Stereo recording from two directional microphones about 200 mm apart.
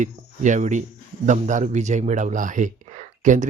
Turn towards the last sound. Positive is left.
turn(degrees=-40)  # may be behind; listen again after turning